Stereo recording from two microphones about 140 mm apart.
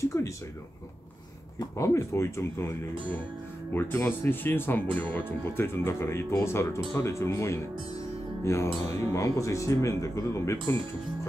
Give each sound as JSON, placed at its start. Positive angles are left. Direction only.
{"t": 0.0, "sound": "speech", "side_deg": 20}
{"t": 1.8, "sound": "speech", "side_deg": 20}
{"t": 3.7, "sound": "speech", "side_deg": 15}
{"t": 8.8, "sound": "speech", "side_deg": 20}